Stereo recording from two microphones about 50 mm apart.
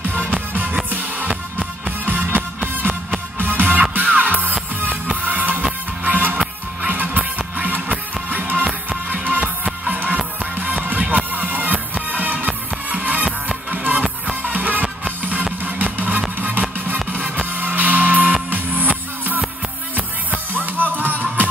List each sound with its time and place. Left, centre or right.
0.1 s music: right
2.0 s music: right
15.6 s vehicle: right
16.3 s music: right